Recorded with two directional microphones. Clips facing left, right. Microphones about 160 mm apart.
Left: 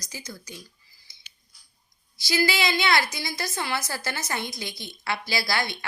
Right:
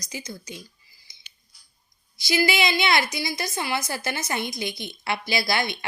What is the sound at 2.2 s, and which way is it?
A woman's voice, 15° right (ahead or behind).